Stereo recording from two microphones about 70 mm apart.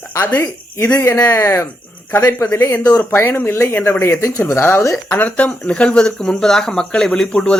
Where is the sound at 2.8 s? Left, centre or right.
Left.